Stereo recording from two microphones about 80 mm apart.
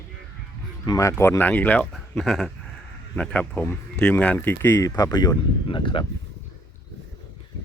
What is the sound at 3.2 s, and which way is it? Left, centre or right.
Speech, centre.